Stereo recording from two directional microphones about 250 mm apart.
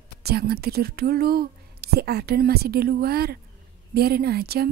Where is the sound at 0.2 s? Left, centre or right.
Right.